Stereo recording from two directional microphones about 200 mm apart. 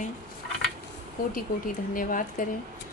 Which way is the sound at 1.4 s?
45° left (ahead or behind).